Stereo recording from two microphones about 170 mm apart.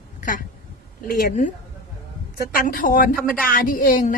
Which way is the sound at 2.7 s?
55° left (ahead or behind).